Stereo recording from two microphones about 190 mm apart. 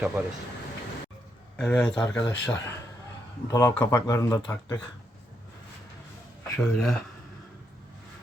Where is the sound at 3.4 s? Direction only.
20° left (ahead or behind).